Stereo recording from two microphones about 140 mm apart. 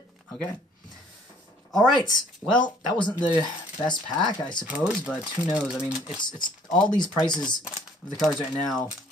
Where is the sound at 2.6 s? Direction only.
30° left (ahead or behind).